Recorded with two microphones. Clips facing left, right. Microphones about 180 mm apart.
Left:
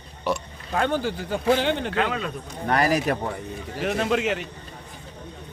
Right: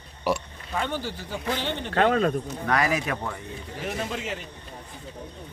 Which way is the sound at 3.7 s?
75° left (ahead or behind).